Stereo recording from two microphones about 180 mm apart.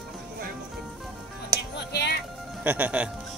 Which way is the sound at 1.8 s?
70° left (ahead or behind).